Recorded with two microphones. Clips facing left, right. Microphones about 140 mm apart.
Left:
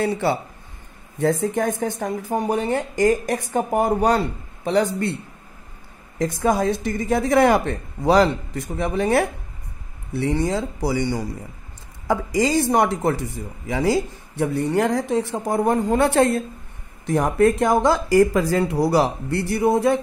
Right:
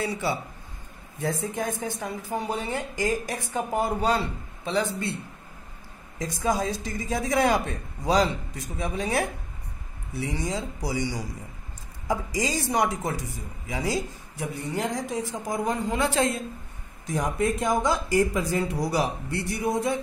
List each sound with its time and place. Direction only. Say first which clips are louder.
0.0 s speech: left 7 dB; 60° left (ahead or behind)
1.4 s a man's voice: left 8 dB; 55° left (ahead or behind)
6.1 s speech: left 6 dB; 60° left (ahead or behind)